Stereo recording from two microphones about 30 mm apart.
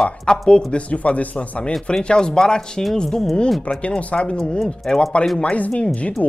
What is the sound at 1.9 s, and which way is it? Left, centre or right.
Speech, left.